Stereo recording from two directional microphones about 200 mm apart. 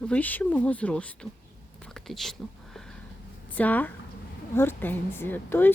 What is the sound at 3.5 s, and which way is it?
Speech, 10° left (ahead or behind).